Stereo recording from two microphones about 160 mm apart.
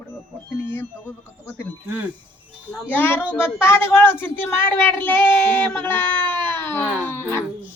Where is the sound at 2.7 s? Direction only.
10° left (ahead or behind).